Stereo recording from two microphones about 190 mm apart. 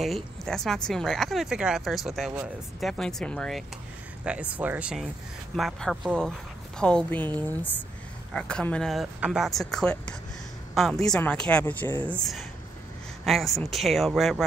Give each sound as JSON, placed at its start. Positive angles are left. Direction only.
{"t": 0.0, "sound": "speech", "side_deg": 0}
{"t": 8.3, "sound": "a woman's voice", "side_deg": 5}